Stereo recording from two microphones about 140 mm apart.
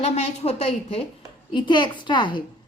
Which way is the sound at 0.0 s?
50° left (ahead or behind).